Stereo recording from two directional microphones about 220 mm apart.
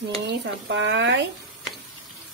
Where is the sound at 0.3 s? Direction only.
55° right (ahead or behind).